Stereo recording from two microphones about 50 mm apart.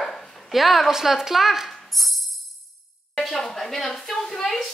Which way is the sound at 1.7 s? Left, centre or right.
Centre.